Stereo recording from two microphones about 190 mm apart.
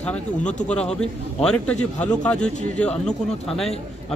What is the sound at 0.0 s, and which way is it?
A man's voice, 5° left (ahead or behind).